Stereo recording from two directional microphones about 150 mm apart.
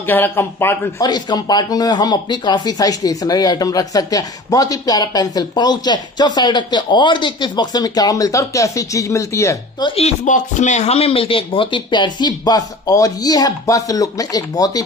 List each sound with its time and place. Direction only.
0.0 s speech: 15° left (ahead or behind)
1.0 s speech: 30° left (ahead or behind)
9.8 s speech: 45° left (ahead or behind); by 14.8 s 25° left (ahead or behind)